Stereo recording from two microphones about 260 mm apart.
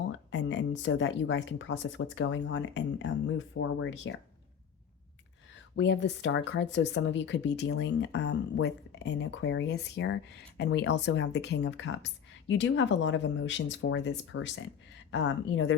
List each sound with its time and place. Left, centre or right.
0.3 s speech: left
5.7 s speech: left